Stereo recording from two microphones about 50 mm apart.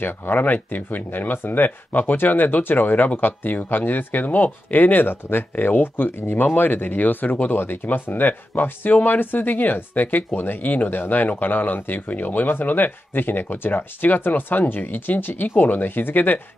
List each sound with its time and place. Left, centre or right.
0.0 s speech: left